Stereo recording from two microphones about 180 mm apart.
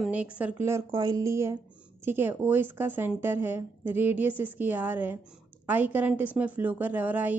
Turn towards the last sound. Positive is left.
turn(degrees=-10)  # may be behind; listen again after turning